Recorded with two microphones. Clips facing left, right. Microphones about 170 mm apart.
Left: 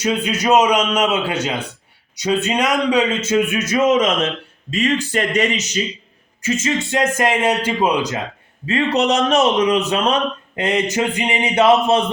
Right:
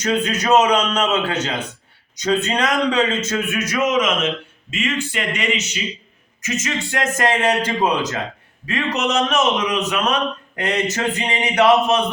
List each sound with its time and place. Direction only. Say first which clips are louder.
0.0 s speech: left 1 dB; 10° left (ahead or behind); by 5.8 s 40° left (ahead or behind)
6.4 s speech: left 5 dB; 25° left (ahead or behind)
8.6 s a man's voice: left 5 dB; 30° left (ahead or behind)